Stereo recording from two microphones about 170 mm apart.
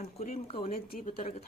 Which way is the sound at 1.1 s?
35° left (ahead or behind).